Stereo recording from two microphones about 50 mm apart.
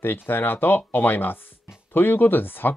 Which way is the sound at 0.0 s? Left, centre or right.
Left.